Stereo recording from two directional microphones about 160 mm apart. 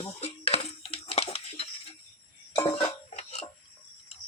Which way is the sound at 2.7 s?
40° left (ahead or behind).